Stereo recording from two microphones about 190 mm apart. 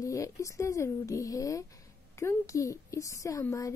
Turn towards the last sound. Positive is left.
turn(degrees=15)  # may be behind; listen again after turning